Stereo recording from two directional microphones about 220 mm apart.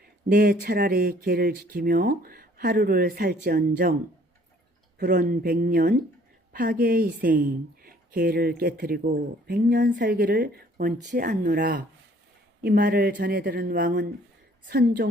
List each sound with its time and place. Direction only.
0.0 s speech: 40° right (ahead or behind)
4.9 s a woman's voice: 40° right (ahead or behind)